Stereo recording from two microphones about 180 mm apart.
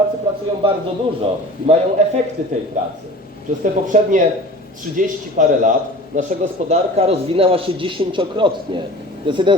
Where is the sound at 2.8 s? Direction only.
45° right (ahead or behind).